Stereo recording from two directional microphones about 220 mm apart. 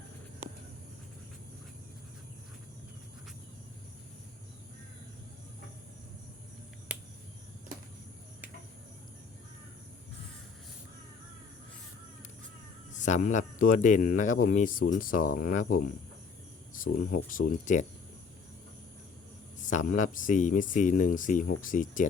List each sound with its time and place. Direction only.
13.0 s speech: 35° left (ahead or behind)
19.6 s speech: 35° left (ahead or behind)